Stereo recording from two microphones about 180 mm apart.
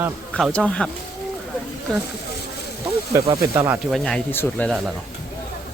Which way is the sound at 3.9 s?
Centre (ahead or behind).